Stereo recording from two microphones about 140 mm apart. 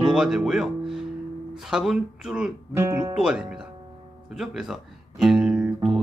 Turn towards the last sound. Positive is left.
turn(degrees=-5)  # may be behind; listen again after turning